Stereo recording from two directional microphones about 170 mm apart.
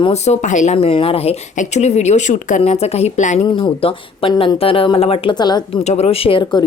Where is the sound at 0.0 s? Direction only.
40° left (ahead or behind).